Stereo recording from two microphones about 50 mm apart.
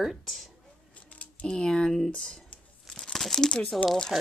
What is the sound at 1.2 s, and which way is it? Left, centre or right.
Speech, left.